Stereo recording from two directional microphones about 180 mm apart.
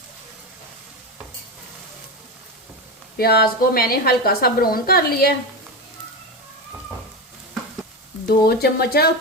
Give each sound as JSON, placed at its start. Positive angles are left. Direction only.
{"t": 3.2, "sound": "a woman's voice", "side_deg": 60}
{"t": 8.3, "sound": "a woman's voice", "side_deg": 60}